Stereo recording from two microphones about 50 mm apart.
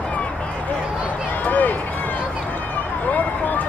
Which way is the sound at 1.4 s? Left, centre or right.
Left.